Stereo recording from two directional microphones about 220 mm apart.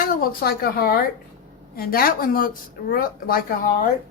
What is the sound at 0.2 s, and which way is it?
Speech, 45° left (ahead or behind).